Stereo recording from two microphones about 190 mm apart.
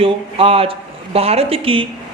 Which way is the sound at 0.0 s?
30° right (ahead or behind).